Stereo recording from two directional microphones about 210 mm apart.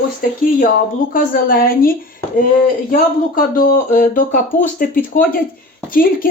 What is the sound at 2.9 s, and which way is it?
Speech, 45° left (ahead or behind).